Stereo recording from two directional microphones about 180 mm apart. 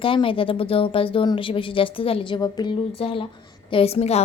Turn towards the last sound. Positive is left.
turn(degrees=35)  # may be behind; listen again after turning